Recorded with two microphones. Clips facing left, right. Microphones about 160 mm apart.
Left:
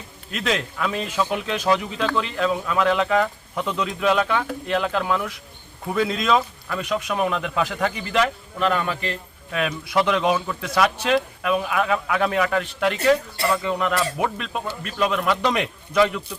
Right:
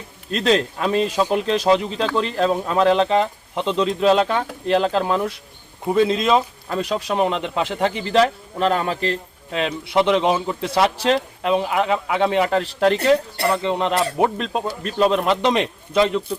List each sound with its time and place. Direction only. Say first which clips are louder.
0.3 s speech: right 7 dB; 35° right (ahead or behind)